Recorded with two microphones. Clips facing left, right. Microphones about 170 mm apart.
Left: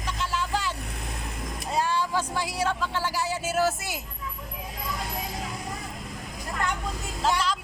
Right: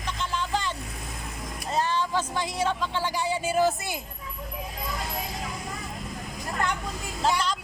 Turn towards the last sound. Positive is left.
turn(degrees=0)  # may be behind; listen again after turning